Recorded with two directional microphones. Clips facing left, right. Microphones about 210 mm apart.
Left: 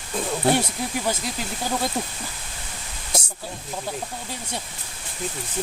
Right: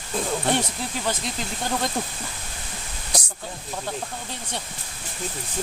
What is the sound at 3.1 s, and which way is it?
Snake, 25° left (ahead or behind).